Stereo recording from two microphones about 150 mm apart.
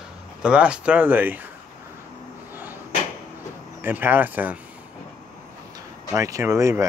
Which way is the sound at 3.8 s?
15° right (ahead or behind).